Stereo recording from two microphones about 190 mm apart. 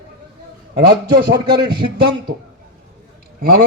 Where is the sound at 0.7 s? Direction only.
55° right (ahead or behind).